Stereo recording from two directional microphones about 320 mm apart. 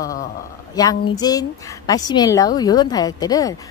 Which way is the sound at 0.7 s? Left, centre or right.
Centre.